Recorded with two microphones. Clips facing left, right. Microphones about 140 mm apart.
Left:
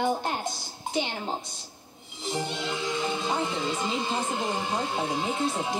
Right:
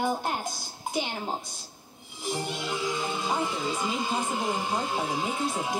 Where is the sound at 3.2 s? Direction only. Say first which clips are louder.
Left 1 dB; 10° right (ahead or behind).